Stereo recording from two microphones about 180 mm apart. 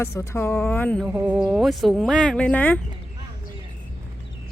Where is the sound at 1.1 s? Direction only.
10° right (ahead or behind); by 2.8 s 10° left (ahead or behind).